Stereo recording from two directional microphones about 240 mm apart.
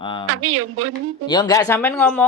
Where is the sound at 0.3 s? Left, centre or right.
Right.